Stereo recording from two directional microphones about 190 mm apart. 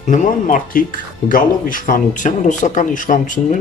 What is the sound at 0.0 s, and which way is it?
Speech, 40° left (ahead or behind).